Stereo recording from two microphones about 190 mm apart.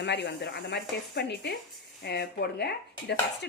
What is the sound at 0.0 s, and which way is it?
Speech, 65° left (ahead or behind).